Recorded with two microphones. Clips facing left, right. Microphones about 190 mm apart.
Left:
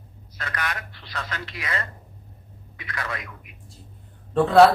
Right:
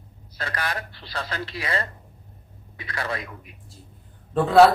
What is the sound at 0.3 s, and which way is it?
Speech, 30° right (ahead or behind).